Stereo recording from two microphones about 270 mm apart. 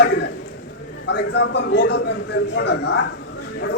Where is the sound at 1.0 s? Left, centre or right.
Left.